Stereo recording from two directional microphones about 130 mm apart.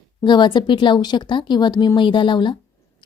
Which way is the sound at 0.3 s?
35° left (ahead or behind).